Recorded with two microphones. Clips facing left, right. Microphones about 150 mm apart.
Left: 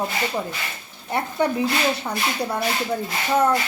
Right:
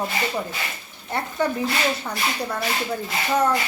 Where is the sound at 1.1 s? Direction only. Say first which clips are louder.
Left 2 dB; 15° left (ahead or behind).